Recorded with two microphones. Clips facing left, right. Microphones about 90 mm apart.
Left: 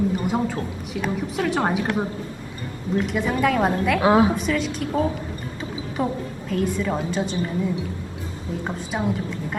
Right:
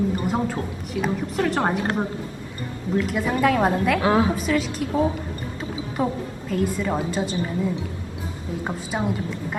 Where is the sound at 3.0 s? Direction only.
Centre (ahead or behind).